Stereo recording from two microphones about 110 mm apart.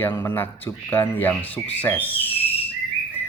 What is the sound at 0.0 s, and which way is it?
Speech, 20° left (ahead or behind).